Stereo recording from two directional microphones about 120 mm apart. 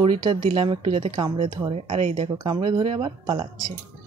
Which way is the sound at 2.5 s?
40° right (ahead or behind).